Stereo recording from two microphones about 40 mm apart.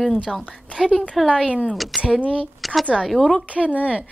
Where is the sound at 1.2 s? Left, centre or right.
Centre.